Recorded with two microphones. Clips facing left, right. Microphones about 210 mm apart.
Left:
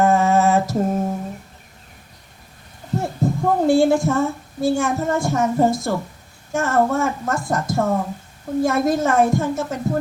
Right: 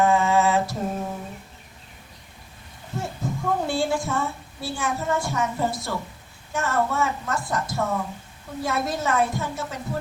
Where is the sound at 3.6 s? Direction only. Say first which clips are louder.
Left 9 dB; 45° left (ahead or behind).